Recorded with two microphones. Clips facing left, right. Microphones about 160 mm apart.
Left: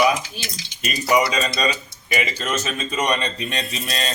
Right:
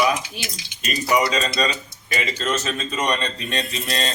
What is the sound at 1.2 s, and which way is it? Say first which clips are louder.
A man's voice: even; 15° left (ahead or behind).